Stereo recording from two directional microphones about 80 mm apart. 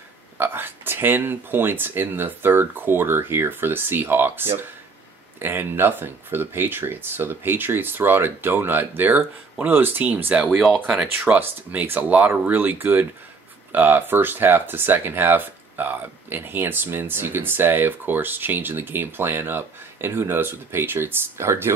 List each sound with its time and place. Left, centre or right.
0.4 s speech: right